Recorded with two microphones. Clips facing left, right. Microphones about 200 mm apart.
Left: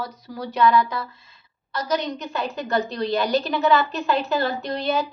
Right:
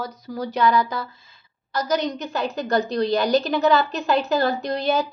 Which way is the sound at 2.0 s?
45° right (ahead or behind).